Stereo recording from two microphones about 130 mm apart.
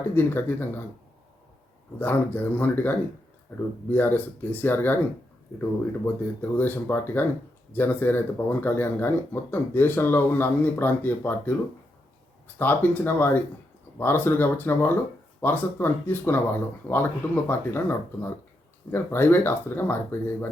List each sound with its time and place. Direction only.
0.1 s speech: 15° left (ahead or behind)
2.0 s speech: 15° left (ahead or behind)
6.4 s speech: 15° left (ahead or behind)
12.5 s speech: 15° left (ahead or behind)